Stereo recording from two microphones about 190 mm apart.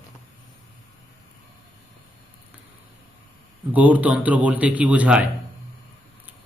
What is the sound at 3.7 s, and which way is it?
A man's voice, 10° right (ahead or behind).